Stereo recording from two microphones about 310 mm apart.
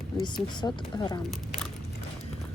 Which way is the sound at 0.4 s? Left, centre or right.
Centre.